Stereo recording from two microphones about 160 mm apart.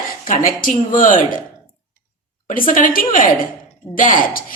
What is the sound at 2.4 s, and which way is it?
A woman's voice, 60° left (ahead or behind).